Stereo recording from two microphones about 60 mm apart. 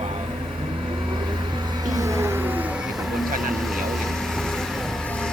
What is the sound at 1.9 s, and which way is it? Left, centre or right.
Vehicle, right.